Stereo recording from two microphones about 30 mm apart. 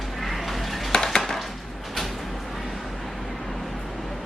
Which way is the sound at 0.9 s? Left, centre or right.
Left.